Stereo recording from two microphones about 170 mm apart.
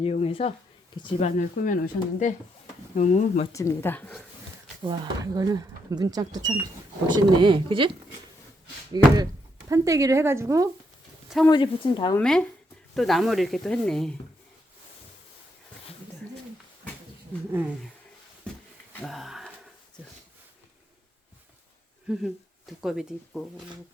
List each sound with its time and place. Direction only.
0.0 s speech: 35° left (ahead or behind)
1.2 s speech: 50° left (ahead or behind)
3.5 s speech: 15° left (ahead or behind)
4.8 s speech: 25° right (ahead or behind)
9.0 s a woman's voice: 25° right (ahead or behind)
11.4 s speech: 30° left (ahead or behind)
12.2 s speech: 5° left (ahead or behind)
19.0 s sniff: centre (ahead or behind)
22.1 s speech: centre (ahead or behind)